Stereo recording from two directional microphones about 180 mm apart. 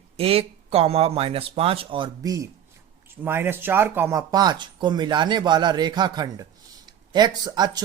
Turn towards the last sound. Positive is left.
turn(degrees=-20)  # may be behind; listen again after turning